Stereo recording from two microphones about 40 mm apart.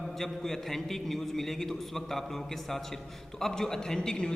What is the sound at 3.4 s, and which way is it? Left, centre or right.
Speech, centre.